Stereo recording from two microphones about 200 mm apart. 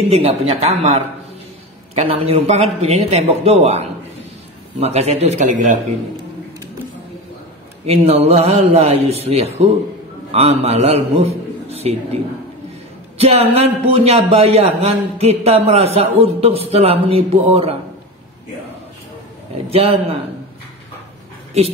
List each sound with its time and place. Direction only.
0.1 s a man's voice: 30° right (ahead or behind)
7.8 s a man's voice: 30° right (ahead or behind)
13.2 s a man's voice: 30° right (ahead or behind)
19.7 s speech: 30° right (ahead or behind)